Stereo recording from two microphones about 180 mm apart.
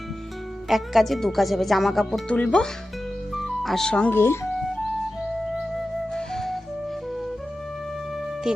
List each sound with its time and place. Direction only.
0.7 s speech: centre (ahead or behind)
5.5 s flute: 5° left (ahead or behind)
8.5 s speech: 5° right (ahead or behind)